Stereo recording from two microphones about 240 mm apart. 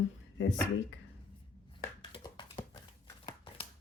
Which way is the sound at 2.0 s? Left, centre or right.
Centre.